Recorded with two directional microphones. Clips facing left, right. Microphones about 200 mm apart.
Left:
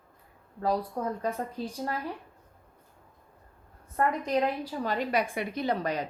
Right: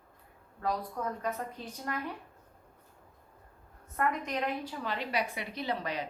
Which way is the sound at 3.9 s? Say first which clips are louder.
Left 5 dB; 35° left (ahead or behind).